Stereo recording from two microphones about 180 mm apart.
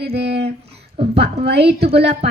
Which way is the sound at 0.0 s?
70° right (ahead or behind).